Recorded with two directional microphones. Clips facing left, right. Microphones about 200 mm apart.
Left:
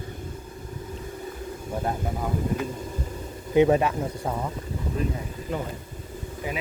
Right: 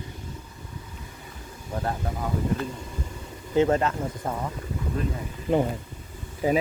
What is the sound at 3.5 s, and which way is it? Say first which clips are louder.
Speech: left 2 dB; 15° left (ahead or behind).